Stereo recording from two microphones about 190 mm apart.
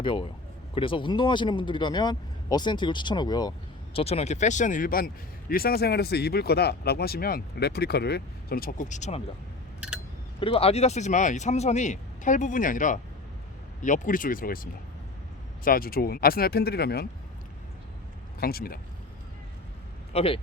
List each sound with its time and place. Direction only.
0.0 s a man's voice: 25° left (ahead or behind)
3.9 s speech: 35° left (ahead or behind)
10.4 s speech: 30° left (ahead or behind); by 17.1 s 55° left (ahead or behind)
18.3 s speech: 50° left (ahead or behind)
20.1 s a man's voice: 30° left (ahead or behind)